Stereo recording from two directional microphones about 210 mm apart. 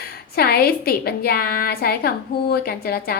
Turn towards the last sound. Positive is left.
turn(degrees=45)  # may be behind; listen again after turning